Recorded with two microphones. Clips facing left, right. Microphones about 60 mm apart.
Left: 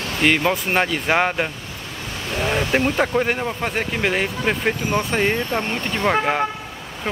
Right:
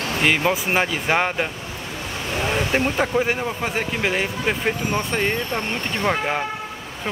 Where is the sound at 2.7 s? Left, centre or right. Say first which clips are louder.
Left 2 dB; centre.